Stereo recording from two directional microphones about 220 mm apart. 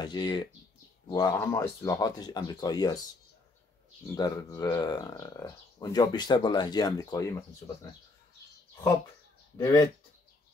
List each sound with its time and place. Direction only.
0.0 s speech: 20° left (ahead or behind)
4.1 s speech: 15° left (ahead or behind)
9.6 s speech: 15° left (ahead or behind)